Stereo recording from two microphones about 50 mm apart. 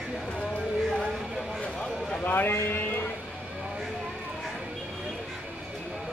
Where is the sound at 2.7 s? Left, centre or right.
Left.